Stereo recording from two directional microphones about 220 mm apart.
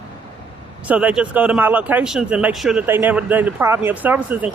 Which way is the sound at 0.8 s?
5° right (ahead or behind).